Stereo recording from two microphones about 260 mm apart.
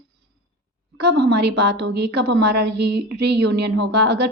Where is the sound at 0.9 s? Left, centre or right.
Right.